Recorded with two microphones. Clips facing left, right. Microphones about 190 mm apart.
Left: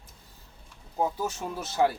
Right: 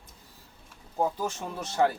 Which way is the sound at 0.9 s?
5° left (ahead or behind).